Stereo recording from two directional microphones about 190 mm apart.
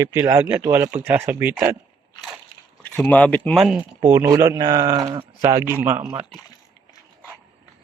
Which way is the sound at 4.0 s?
15° right (ahead or behind).